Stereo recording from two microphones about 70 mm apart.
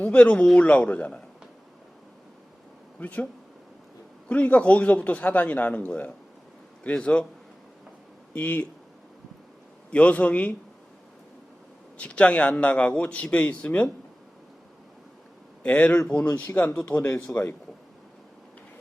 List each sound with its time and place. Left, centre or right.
0.0 s a man's voice: centre
3.0 s a man's voice: left
4.3 s a man's voice: left
8.3 s speech: left
9.9 s a man's voice: centre
11.9 s a man's voice: centre
15.6 s a man's voice: centre